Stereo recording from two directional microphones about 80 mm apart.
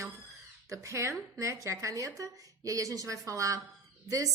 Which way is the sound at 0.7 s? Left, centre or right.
Right.